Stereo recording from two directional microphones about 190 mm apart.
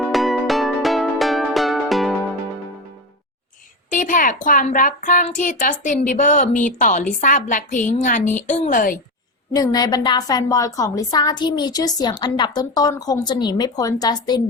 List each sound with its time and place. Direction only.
0.1 s music: centre (ahead or behind)
3.8 s a child's voice: 45° left (ahead or behind)
9.5 s a woman's voice: 20° left (ahead or behind)